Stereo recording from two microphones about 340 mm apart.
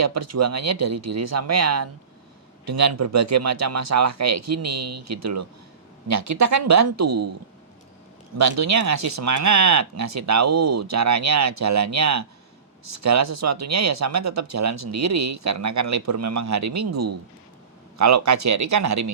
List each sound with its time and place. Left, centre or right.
0.0 s speech: right
8.4 s speech: right